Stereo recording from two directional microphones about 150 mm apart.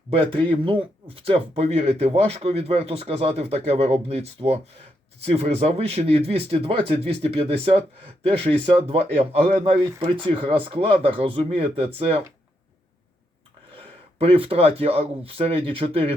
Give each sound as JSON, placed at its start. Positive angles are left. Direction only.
{"t": 0.6, "sound": "speech", "side_deg": -35}
{"t": 13.7, "sound": "speech", "side_deg": -40}